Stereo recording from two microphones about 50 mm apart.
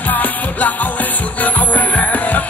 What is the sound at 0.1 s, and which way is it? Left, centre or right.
Music, left.